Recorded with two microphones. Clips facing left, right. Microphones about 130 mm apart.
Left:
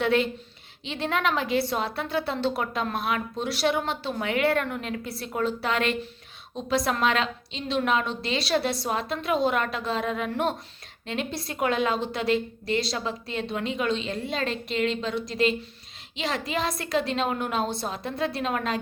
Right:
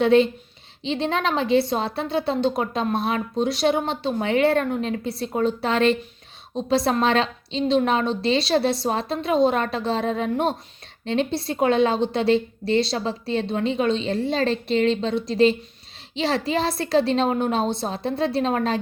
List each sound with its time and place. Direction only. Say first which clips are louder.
0.0 s a woman's voice: right 7 dB; 25° right (ahead or behind)